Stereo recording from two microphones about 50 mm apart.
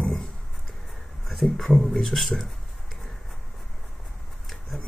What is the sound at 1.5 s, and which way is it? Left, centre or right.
Speech, centre.